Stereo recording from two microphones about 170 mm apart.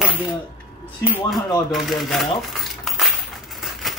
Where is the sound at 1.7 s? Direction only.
Centre (ahead or behind).